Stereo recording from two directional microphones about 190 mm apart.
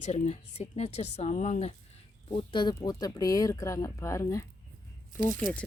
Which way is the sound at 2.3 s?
25° left (ahead or behind).